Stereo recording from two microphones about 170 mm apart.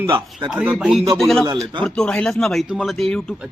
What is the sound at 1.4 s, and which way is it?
Speech, 25° right (ahead or behind).